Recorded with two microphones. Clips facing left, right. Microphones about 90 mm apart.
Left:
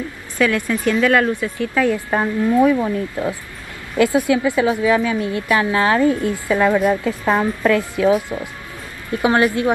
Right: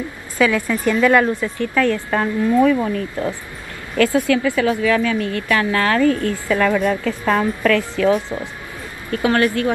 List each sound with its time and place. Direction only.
0.4 s a woman's voice: centre (ahead or behind); by 8.1 s 15° left (ahead or behind)
8.3 s speech: 25° right (ahead or behind)
9.1 s a woman's voice: 20° left (ahead or behind)